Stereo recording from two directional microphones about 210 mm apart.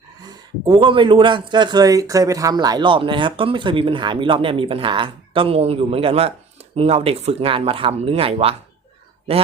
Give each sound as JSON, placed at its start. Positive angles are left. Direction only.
{"t": 0.2, "sound": "a man's voice", "side_deg": -20}